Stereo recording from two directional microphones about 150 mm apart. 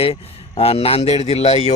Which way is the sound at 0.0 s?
40° left (ahead or behind).